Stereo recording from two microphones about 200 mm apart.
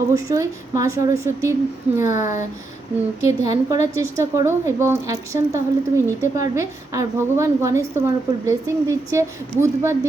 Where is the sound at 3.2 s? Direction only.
15° right (ahead or behind).